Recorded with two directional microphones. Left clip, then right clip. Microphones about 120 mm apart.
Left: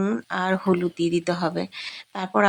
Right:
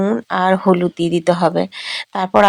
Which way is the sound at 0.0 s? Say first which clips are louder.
Right 9 dB; 35° right (ahead or behind).